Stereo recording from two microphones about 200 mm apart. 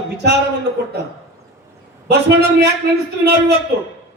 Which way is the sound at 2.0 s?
55° right (ahead or behind).